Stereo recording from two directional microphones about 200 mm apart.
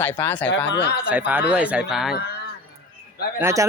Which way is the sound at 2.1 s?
50° left (ahead or behind).